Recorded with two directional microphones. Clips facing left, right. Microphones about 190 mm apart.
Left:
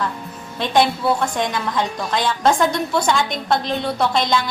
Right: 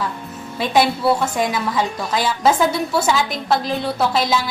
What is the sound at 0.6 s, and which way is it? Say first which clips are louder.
A woman's voice: right 1 dB; 5° right (ahead or behind).